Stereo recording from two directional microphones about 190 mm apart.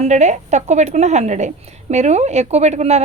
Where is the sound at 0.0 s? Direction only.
35° right (ahead or behind).